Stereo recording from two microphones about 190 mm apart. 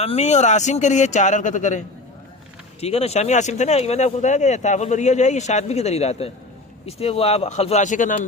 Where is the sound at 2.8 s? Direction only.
30° left (ahead or behind).